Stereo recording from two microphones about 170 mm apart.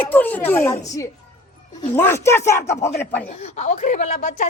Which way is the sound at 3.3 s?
40° left (ahead or behind).